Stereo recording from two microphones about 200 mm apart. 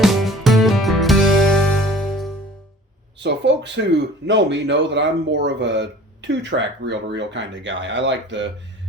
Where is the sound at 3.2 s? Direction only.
60° right (ahead or behind).